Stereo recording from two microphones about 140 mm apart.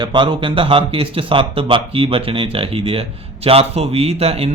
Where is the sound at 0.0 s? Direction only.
35° right (ahead or behind).